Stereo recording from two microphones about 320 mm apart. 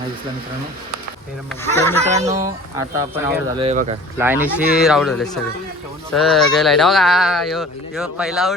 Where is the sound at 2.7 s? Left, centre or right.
Centre.